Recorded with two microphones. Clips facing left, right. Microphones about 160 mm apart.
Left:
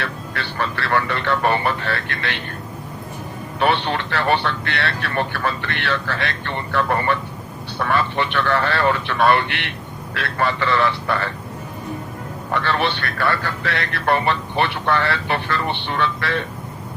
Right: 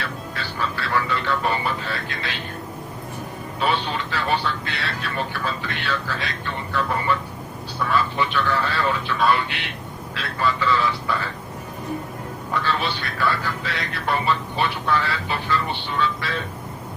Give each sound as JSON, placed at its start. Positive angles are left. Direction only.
{"t": 0.0, "sound": "speech", "side_deg": 65}
{"t": 3.6, "sound": "speech", "side_deg": 65}
{"t": 12.5, "sound": "speech", "side_deg": 65}